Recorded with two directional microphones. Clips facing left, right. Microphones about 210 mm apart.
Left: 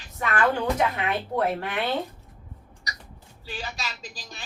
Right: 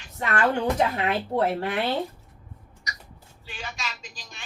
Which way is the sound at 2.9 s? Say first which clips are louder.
Left 1 dB; 35° left (ahead or behind).